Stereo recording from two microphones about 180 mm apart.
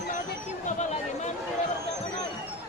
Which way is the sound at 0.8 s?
40° left (ahead or behind).